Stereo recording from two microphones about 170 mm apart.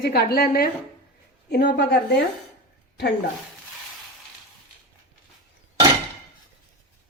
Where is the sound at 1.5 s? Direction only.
85° left.